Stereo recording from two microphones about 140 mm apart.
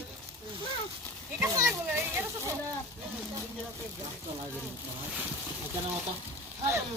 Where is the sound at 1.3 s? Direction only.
20° right (ahead or behind).